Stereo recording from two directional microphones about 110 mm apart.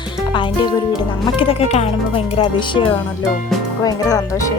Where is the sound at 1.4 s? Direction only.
60° left (ahead or behind).